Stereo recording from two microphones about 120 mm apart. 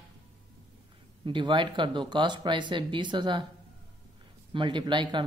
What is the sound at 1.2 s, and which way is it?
Speech, 40° right (ahead or behind).